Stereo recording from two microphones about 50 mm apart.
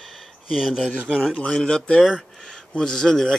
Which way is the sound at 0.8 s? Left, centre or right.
Centre.